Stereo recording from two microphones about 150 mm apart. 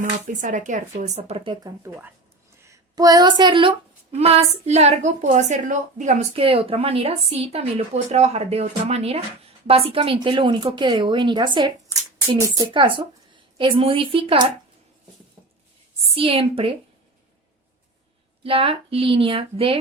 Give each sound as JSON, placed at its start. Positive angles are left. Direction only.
{"t": 0.0, "sound": "a woman's voice", "side_deg": -55}
{"t": 1.8, "sound": "a woman's voice", "side_deg": -15}
{"t": 6.3, "sound": "a woman's voice", "side_deg": -40}
{"t": 16.1, "sound": "speech", "side_deg": -35}
{"t": 18.4, "sound": "speech", "side_deg": -35}